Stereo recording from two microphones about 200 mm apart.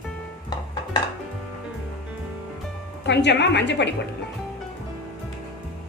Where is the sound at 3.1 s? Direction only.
60° left (ahead or behind).